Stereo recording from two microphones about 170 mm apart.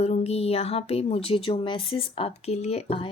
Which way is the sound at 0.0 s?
40° left (ahead or behind).